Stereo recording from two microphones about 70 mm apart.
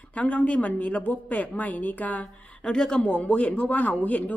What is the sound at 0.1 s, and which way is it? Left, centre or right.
Speech, left.